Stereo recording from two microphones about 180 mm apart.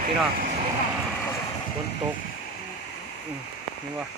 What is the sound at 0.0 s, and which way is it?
Speech, 50° right (ahead or behind).